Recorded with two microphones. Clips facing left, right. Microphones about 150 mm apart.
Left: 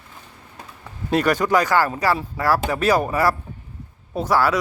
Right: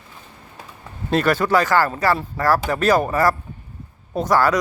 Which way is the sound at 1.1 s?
10° left (ahead or behind).